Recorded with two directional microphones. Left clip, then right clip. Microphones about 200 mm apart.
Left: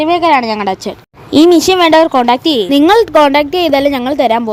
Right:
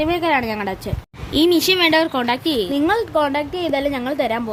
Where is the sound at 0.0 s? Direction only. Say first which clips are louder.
Left 9 dB; 25° left (ahead or behind).